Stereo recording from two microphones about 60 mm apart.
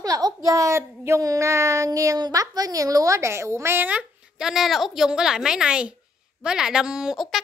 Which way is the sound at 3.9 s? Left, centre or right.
Centre.